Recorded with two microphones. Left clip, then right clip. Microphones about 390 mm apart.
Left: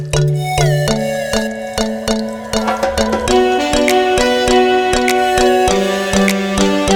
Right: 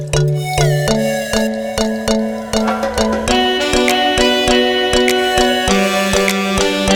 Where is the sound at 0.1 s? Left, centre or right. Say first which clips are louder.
Left 1 dB; centre.